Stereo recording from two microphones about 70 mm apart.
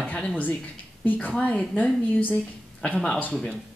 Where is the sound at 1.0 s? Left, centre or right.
Left.